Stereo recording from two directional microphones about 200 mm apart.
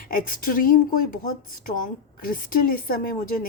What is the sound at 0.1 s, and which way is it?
Speech, 45° left (ahead or behind).